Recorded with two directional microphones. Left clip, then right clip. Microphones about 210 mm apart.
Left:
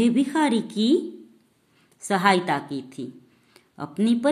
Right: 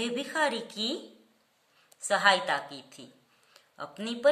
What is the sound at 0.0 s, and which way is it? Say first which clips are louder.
A woman's voice: left 7 dB; 15° left (ahead or behind).